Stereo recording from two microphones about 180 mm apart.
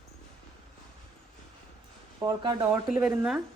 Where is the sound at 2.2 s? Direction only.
25° right (ahead or behind).